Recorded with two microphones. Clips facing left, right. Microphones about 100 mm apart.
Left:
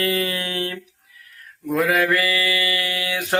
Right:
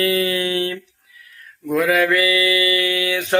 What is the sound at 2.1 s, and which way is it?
Mantra, 40° left (ahead or behind).